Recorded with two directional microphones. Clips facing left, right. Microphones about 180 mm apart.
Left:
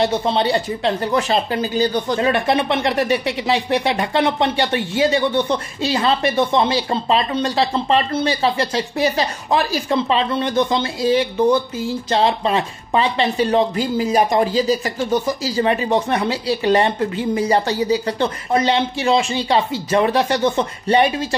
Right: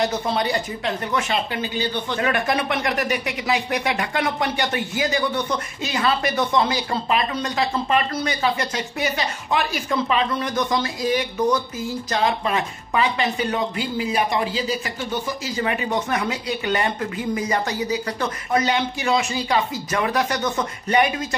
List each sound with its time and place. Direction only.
0.0 s speech: 25° left (ahead or behind)
2.1 s speech: 30° left (ahead or behind)